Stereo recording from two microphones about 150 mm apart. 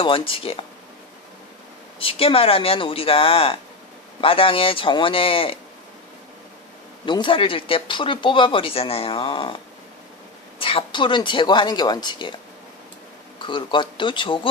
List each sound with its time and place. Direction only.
0.0 s speech: 35° left (ahead or behind)
2.0 s speech: 40° left (ahead or behind)
7.0 s speech: 30° left (ahead or behind)
10.6 s speech: 35° left (ahead or behind)
13.4 s speech: 30° left (ahead or behind)